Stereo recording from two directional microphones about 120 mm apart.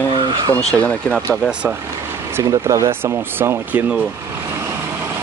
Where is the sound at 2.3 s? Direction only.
20° right (ahead or behind).